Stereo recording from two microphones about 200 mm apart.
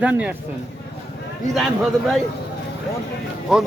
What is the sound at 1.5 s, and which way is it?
Speech, centre (ahead or behind).